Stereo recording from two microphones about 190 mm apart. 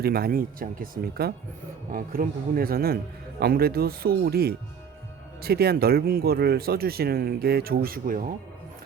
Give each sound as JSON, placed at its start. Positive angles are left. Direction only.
{"t": 0.0, "sound": "speech", "side_deg": -55}